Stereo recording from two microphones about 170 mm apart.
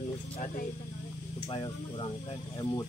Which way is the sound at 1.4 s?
25° left (ahead or behind).